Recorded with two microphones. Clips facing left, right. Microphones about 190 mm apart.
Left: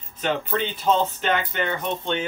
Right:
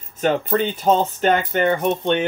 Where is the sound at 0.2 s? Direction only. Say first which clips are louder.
Right 6 dB; 45° right (ahead or behind).